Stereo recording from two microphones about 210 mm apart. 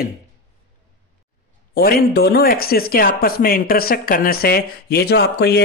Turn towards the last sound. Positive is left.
turn(degrees=50)  # may be behind; listen again after turning